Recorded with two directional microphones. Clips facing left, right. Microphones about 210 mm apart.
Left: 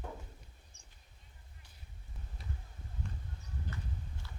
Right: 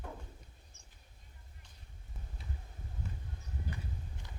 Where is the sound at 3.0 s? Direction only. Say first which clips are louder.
Right 1 dB; 5° right (ahead or behind).